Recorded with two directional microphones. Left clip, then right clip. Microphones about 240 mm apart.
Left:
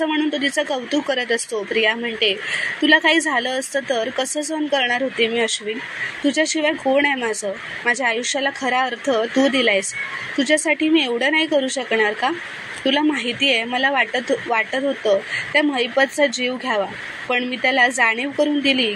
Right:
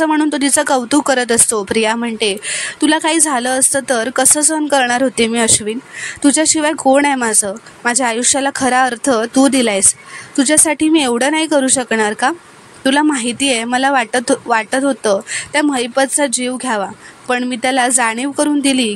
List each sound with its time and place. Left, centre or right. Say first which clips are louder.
0.0 s a woman's voice: right 6 dB; right